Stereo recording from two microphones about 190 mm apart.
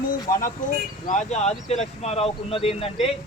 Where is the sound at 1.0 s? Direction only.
40° left (ahead or behind).